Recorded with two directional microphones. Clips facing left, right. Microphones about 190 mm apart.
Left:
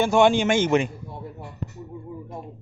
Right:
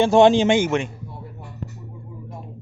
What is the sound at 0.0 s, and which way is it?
Speech, 30° right (ahead or behind).